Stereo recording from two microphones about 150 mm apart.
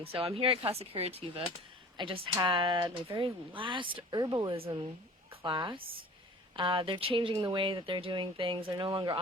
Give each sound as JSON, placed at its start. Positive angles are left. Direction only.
{"t": 0.0, "sound": "speech", "side_deg": -40}